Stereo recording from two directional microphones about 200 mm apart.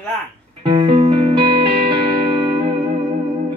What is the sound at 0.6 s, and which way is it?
Music, 25° right (ahead or behind).